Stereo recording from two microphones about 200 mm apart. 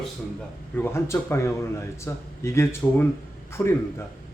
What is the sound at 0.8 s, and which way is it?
A man's voice, 10° left (ahead or behind).